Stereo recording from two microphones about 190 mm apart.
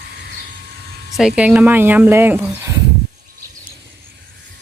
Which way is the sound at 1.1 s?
5° right (ahead or behind).